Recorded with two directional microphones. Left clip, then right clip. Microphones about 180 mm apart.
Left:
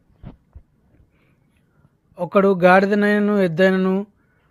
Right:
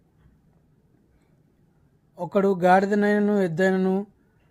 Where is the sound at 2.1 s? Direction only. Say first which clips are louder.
Left 6 dB; 10° left (ahead or behind).